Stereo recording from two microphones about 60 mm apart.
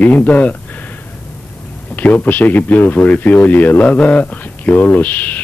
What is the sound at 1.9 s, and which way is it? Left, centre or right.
A man's voice, left.